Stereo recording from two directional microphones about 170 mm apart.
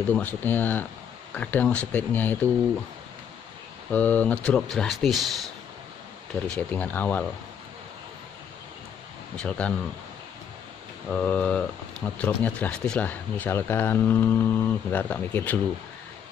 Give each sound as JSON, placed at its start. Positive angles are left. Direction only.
{"t": 0.4, "sound": "speech", "side_deg": 10}
{"t": 3.9, "sound": "speech", "side_deg": 10}
{"t": 6.4, "sound": "speech", "side_deg": 5}
{"t": 9.4, "sound": "speech", "side_deg": 5}
{"t": 11.1, "sound": "speech", "side_deg": 10}